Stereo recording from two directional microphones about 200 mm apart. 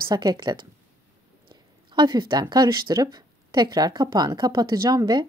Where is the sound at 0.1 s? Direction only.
20° right (ahead or behind).